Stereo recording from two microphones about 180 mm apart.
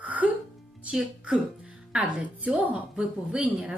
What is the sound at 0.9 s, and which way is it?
Speech, 5° right (ahead or behind).